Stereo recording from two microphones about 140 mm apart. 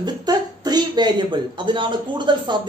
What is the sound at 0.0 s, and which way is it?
Speech, 30° right (ahead or behind).